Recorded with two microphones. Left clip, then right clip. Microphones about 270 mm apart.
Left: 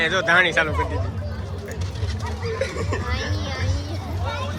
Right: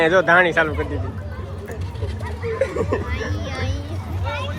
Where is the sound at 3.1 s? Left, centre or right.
Centre.